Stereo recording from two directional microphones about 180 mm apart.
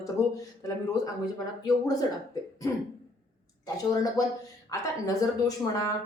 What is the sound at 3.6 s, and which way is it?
Speech, 20° left (ahead or behind).